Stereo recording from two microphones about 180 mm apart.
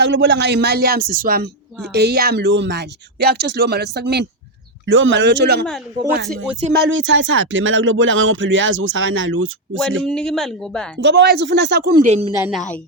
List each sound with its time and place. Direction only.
0.0 s speech: 75° right (ahead or behind); by 1.5 s 50° right (ahead or behind)
1.9 s speech: 65° right (ahead or behind)
4.9 s speech: 90° right; by 5.6 s 70° right (ahead or behind)
6.2 s speech: centre (ahead or behind)
6.7 s speech: 85° right
10.1 s speech: 5° left (ahead or behind)
10.9 s speech: 70° right (ahead or behind)
12.0 s speech: 35° right (ahead or behind)